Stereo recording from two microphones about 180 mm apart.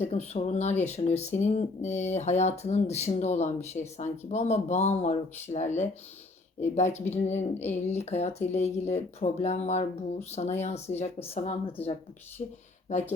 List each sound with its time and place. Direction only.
0.0 s speech: 35° left (ahead or behind)